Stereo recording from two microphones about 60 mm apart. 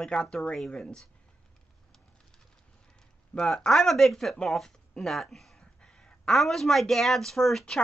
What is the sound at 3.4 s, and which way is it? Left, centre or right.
Speech, centre.